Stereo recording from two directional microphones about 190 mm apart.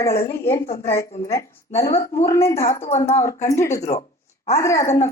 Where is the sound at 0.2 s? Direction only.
15° left (ahead or behind).